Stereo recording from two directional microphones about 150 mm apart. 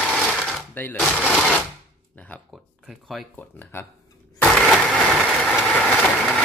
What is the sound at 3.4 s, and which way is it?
Speech, 10° left (ahead or behind).